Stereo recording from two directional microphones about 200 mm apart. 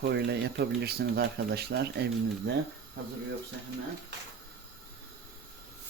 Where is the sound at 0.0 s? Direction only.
60° right (ahead or behind).